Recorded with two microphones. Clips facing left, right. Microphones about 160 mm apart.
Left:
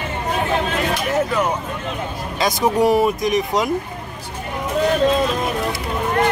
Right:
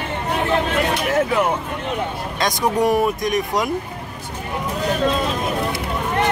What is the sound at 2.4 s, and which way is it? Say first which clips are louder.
Speech: left 2 dB; 5° left (ahead or behind).